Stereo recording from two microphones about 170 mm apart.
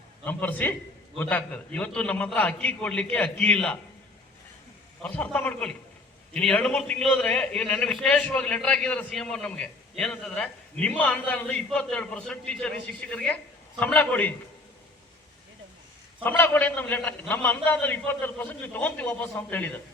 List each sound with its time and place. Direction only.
0.3 s a man's voice: 10° left (ahead or behind)
5.0 s a man's voice: 10° left (ahead or behind)
16.2 s a man's voice: 10° left (ahead or behind)